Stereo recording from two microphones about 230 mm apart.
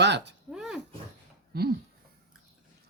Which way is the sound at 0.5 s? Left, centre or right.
Centre.